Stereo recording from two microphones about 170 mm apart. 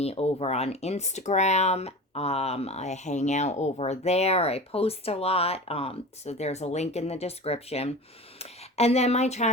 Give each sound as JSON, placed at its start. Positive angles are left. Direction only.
{"t": 0.0, "sound": "speech", "side_deg": 35}